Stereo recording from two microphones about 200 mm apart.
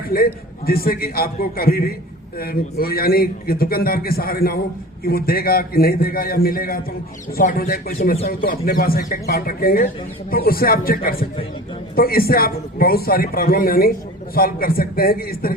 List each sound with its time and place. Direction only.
0.1 s speech: 50° left (ahead or behind)